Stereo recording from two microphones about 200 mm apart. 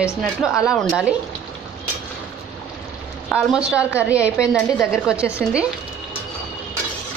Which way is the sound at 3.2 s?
5° right (ahead or behind).